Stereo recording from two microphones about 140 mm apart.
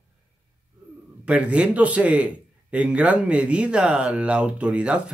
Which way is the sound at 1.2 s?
10° right (ahead or behind).